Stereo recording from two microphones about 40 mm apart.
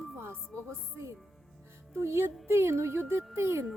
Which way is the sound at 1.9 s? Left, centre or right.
Right.